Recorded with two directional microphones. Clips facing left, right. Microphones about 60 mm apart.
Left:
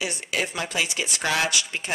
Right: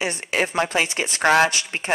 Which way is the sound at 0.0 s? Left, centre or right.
Right.